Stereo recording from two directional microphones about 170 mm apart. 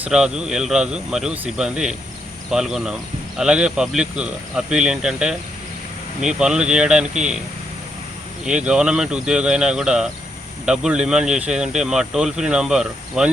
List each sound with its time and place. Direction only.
0.0 s speech: 5° right (ahead or behind)
7.1 s speech: 45° right (ahead or behind)
8.4 s speech: 5° right (ahead or behind)